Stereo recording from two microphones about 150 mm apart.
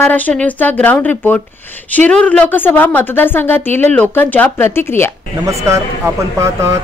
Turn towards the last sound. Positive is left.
turn(degrees=-20)  # may be behind; listen again after turning